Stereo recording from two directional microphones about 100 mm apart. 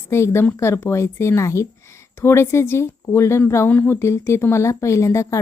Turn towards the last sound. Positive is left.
turn(degrees=30)  # may be behind; listen again after turning